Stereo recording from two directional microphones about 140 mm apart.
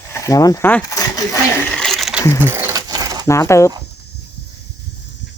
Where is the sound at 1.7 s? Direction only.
Centre (ahead or behind).